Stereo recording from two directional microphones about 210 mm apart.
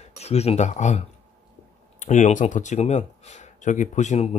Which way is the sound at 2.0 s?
35° left (ahead or behind).